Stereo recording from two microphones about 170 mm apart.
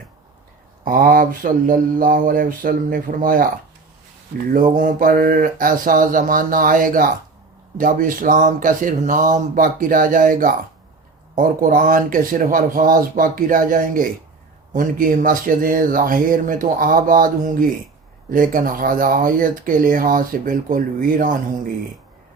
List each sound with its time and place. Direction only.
0.9 s mantra: 55° right (ahead or behind)
4.8 s speech: 55° right (ahead or behind)